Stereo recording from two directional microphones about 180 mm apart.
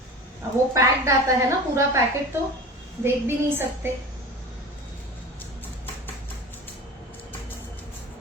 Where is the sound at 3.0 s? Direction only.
15° right (ahead or behind).